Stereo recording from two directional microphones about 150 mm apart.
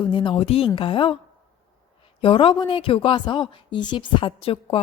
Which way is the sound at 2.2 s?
35° left (ahead or behind).